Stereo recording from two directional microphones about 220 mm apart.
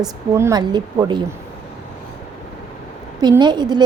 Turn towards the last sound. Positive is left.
turn(degrees=-20)  # may be behind; listen again after turning